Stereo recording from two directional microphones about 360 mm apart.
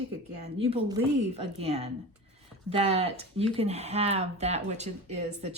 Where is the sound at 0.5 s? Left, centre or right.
Centre.